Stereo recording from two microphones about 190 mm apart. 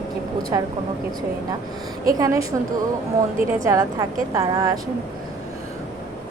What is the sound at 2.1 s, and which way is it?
Speech, 20° right (ahead or behind).